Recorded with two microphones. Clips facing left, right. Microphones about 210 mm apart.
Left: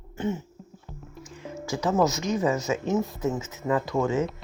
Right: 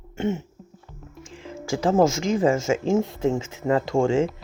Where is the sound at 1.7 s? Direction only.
30° right (ahead or behind).